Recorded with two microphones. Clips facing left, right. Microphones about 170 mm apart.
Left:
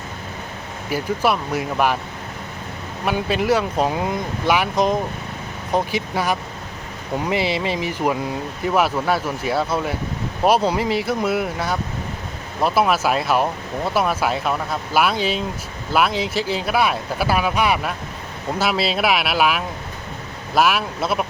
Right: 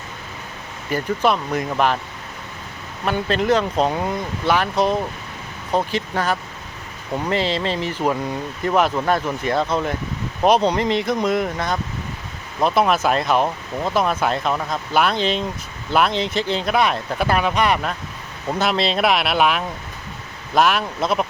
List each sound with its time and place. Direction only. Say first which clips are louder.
0.9 s speech: right 1 dB; 5° left (ahead or behind)
3.0 s speech: even; 10° left (ahead or behind)